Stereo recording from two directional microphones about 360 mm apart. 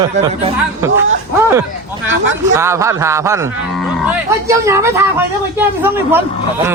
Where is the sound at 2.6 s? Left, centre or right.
Centre.